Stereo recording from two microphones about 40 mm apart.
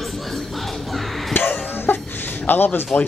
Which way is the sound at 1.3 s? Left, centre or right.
Left.